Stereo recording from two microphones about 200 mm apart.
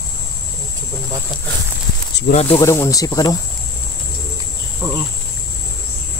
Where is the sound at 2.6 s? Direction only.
15° left (ahead or behind).